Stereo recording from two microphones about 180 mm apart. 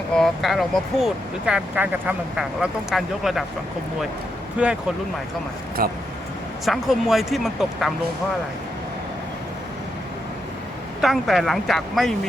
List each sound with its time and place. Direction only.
0.1 s speech: centre (ahead or behind)
4.6 s speech: 5° right (ahead or behind)
5.8 s speech: 55° right (ahead or behind)
6.7 s speech: centre (ahead or behind)
11.0 s speech: centre (ahead or behind)